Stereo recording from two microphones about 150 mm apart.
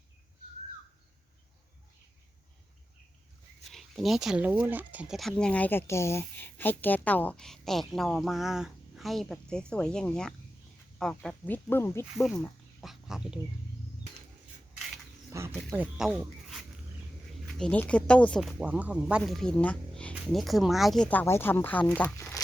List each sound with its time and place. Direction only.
3.7 s speech: centre (ahead or behind)
12.1 s speech: centre (ahead or behind)
15.3 s wild animals: 20° right (ahead or behind)
15.7 s speech: 10° right (ahead or behind)
16.0 s a sound: centre (ahead or behind)
17.4 s speech: 5° left (ahead or behind)
18.6 s speech: 10° right (ahead or behind); by 22.4 s 15° left (ahead or behind)